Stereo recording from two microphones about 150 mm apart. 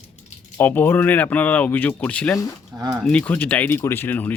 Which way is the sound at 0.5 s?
15° left (ahead or behind).